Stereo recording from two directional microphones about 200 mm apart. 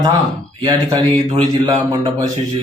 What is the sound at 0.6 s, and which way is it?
Speech, 20° right (ahead or behind).